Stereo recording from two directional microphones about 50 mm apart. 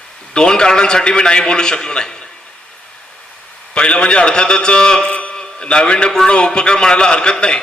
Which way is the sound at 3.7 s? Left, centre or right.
Left.